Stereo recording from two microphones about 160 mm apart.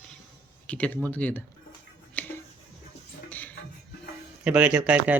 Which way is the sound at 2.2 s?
10° left (ahead or behind).